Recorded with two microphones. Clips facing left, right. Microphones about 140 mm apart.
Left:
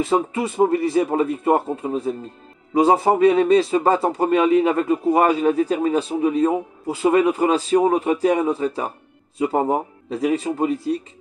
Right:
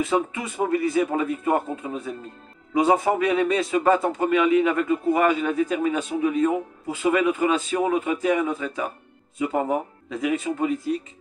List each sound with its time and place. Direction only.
0.0 s a man's voice: 30° left (ahead or behind)